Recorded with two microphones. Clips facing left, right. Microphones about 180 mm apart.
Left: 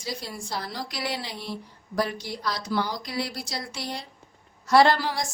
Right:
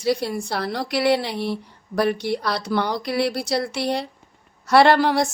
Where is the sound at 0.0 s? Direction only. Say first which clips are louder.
Right 12 dB; 65° right (ahead or behind).